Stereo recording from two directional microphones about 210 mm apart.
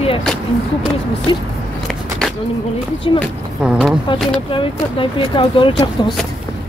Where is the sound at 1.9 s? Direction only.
Centre (ahead or behind).